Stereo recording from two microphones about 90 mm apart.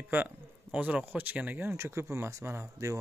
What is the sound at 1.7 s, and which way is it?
A man's voice, 30° right (ahead or behind).